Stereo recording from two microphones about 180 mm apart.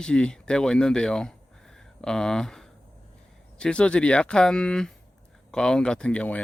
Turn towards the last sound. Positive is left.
turn(degrees=5)  # may be behind; listen again after turning